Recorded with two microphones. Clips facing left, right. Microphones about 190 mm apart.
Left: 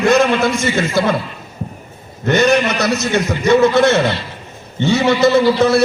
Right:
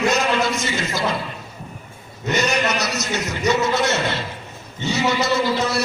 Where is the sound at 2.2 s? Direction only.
55° left (ahead or behind).